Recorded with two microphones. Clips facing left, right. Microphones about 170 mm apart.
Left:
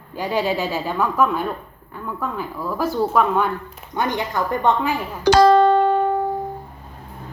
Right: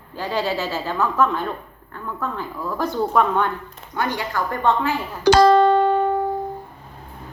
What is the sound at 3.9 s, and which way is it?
Speech, 20° left (ahead or behind).